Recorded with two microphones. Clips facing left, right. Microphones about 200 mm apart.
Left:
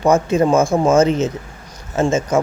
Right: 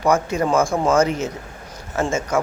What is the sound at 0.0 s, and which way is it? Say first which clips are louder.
Speech: left 5 dB; 25° left (ahead or behind).